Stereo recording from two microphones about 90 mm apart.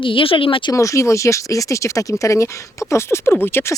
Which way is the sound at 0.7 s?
35° left (ahead or behind).